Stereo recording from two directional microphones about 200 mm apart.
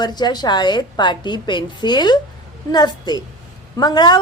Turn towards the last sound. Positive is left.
turn(degrees=20)  # may be behind; listen again after turning